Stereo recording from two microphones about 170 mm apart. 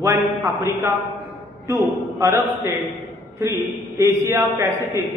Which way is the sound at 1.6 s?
15° right (ahead or behind).